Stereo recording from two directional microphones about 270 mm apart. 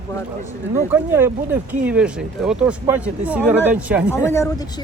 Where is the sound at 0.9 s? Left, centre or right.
Centre.